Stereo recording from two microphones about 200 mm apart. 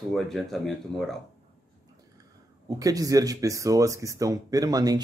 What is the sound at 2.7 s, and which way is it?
Speech, 15° right (ahead or behind).